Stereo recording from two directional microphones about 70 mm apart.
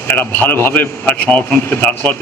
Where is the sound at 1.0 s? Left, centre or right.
Centre.